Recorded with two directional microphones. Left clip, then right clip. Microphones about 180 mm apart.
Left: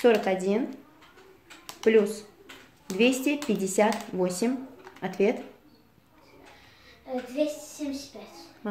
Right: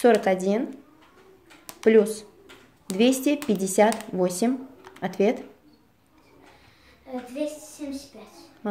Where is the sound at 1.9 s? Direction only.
55° right (ahead or behind).